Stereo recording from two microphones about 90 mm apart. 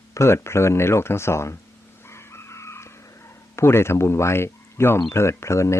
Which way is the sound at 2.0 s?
30° left (ahead or behind).